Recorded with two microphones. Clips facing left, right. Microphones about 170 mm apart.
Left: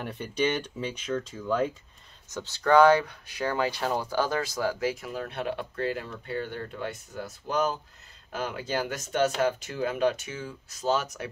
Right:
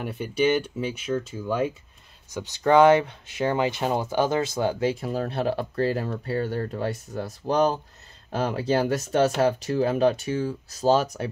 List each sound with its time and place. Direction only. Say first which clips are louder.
0.0 s speech: right 4 dB; 5° right (ahead or behind); by 11.2 s 30° right (ahead or behind)